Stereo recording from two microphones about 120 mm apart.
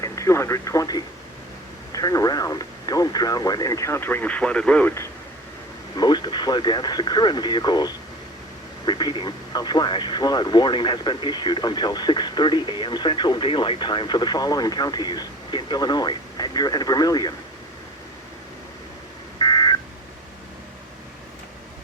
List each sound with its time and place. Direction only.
0.0 s speech: 25° left (ahead or behind)
6.0 s speech: 40° left (ahead or behind)
19.4 s telephone dialing: 35° left (ahead or behind)